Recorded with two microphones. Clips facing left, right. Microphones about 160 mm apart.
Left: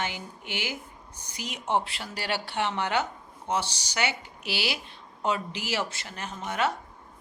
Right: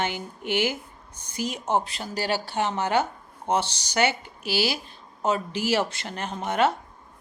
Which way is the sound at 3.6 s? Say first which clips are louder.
Even; 10° left (ahead or behind).